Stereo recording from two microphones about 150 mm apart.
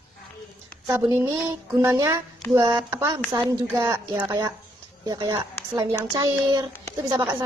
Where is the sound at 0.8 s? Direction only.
20° right (ahead or behind).